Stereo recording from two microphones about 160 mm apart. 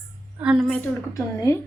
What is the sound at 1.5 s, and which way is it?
Speech, 20° left (ahead or behind).